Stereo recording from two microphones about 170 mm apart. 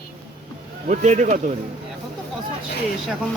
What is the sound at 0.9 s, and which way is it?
Speech, 45° right (ahead or behind).